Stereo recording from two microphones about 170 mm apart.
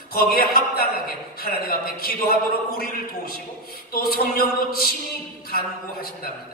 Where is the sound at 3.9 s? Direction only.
60° left (ahead or behind).